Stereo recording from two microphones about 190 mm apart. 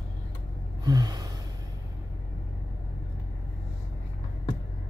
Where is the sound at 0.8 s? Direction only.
20° right (ahead or behind).